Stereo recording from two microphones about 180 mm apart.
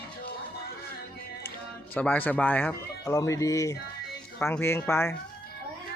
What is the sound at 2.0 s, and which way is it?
Speech, 10° left (ahead or behind).